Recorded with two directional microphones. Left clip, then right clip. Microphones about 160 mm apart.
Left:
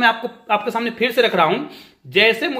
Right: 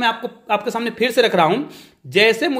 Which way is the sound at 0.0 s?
30° right (ahead or behind).